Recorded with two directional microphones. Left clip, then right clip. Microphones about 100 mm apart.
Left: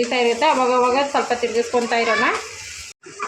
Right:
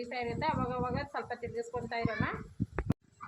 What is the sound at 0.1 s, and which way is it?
Speech, 20° left (ahead or behind).